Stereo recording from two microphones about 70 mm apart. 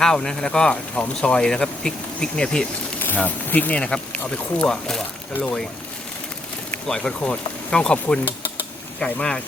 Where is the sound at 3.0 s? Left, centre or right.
Left.